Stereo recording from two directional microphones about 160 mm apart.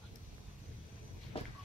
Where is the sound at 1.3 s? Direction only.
40° left (ahead or behind).